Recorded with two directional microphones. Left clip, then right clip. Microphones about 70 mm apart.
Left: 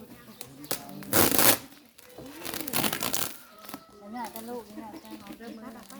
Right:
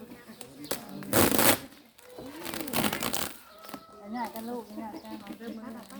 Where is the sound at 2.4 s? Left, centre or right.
Left.